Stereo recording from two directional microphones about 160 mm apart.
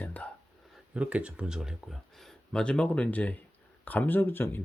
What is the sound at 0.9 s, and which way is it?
Speech, 10° right (ahead or behind).